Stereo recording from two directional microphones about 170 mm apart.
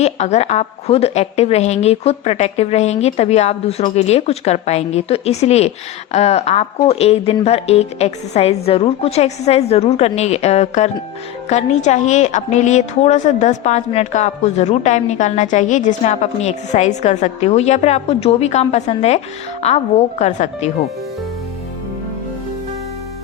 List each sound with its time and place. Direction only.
0.0 s a woman's voice: 40° left (ahead or behind)